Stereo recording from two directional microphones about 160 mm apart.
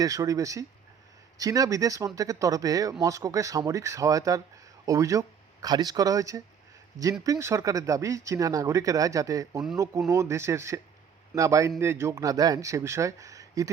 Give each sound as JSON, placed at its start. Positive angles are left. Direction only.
{"t": 0.0, "sound": "speech", "side_deg": -20}